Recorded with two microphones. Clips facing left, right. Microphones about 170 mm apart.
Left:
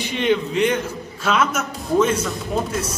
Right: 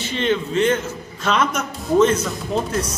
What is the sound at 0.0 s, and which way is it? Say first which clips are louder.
A man's voice: left 1 dB; 15° left (ahead or behind).